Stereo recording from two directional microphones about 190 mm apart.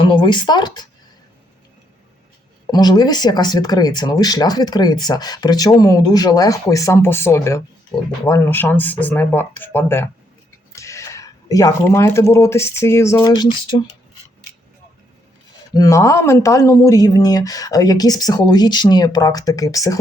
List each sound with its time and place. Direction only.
0.0 s speech: 25° left (ahead or behind)
2.7 s speech: 20° left (ahead or behind)
15.7 s speech: 20° left (ahead or behind)